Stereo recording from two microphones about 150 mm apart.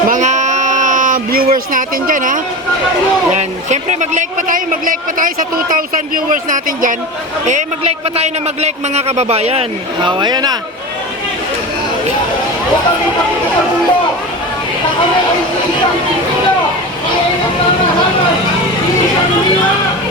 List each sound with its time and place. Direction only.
0.1 s a sound: 55° right (ahead or behind); by 1.5 s 70° right (ahead or behind)
1.5 s a man's voice: 65° right (ahead or behind)
3.3 s a man's voice: 50° right (ahead or behind)
8.1 s a man's voice: 45° right (ahead or behind); by 10.6 s 25° right (ahead or behind)